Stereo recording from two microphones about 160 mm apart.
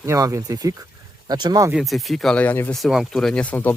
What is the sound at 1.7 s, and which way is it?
Speech, centre (ahead or behind).